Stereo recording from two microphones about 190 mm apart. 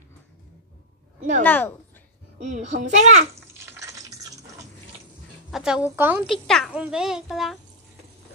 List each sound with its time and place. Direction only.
1.4 s speech: 10° left (ahead or behind)
2.3 s a child's voice: 40° right (ahead or behind)
3.3 s bathtub: 15° right (ahead or behind)
5.5 s a woman's voice: 5° right (ahead or behind)
6.4 s speech: centre (ahead or behind)